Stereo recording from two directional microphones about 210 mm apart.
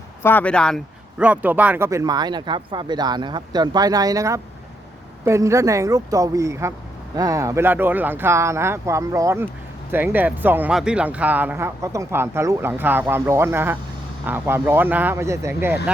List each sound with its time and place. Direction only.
0.2 s speech: 10° left (ahead or behind)
1.2 s speech: 5° right (ahead or behind)